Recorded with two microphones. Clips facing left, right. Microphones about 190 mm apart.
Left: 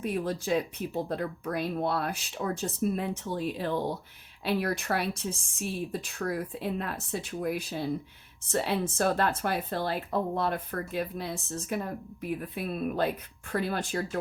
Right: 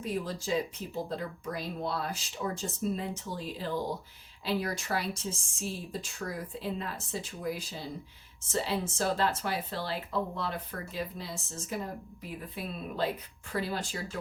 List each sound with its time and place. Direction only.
0.0 s speech: 60° left (ahead or behind)